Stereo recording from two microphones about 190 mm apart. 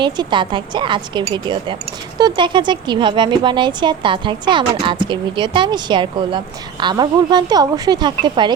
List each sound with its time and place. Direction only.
0.0 s speech: 25° right (ahead or behind)